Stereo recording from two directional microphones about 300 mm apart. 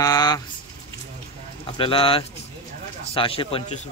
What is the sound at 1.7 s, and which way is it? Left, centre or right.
Speech, centre.